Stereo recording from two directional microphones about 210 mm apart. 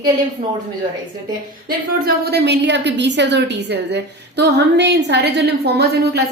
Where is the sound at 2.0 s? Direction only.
55° right (ahead or behind).